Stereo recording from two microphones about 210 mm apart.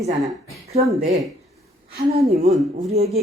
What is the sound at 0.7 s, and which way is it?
Speech, 30° right (ahead or behind).